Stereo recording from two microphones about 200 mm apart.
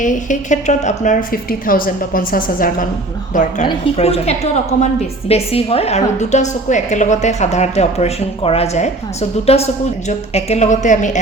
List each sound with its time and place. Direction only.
0.0 s a woman's voice: 40° left (ahead or behind)